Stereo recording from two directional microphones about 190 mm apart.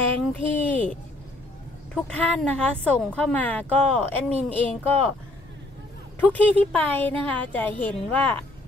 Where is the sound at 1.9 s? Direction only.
5° left (ahead or behind).